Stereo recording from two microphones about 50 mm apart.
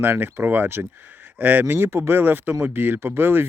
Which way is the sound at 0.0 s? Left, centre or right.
Right.